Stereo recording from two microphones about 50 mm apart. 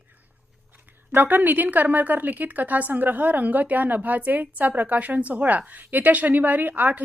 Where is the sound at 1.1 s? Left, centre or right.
Right.